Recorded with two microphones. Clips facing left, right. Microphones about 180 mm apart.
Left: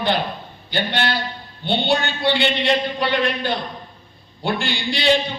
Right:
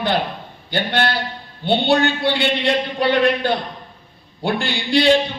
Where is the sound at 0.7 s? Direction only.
50° right (ahead or behind).